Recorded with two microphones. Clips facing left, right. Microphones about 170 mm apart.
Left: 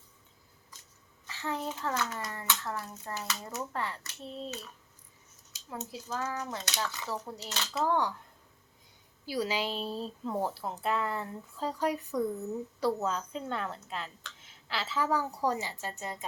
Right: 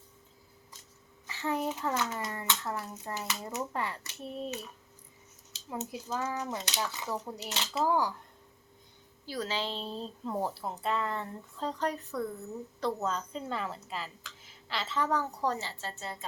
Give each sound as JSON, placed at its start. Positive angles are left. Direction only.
{"t": 1.3, "sound": "a child's voice", "side_deg": -15}
{"t": 7.9, "sound": "a woman's voice", "side_deg": -5}
{"t": 9.2, "sound": "a woman's voice", "side_deg": 10}